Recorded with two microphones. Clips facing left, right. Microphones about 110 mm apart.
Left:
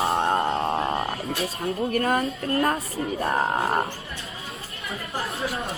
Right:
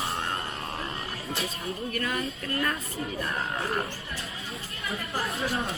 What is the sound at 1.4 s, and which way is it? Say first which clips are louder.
Speech: left 9 dB; 45° left (ahead or behind).